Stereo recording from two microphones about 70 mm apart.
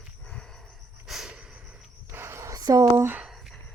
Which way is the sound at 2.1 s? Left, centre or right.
Right.